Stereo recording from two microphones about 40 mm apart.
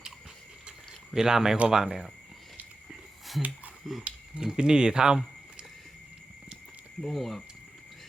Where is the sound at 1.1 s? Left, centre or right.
Centre.